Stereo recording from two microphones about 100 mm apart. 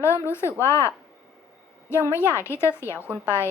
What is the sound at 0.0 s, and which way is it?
A woman's voice, 25° left (ahead or behind).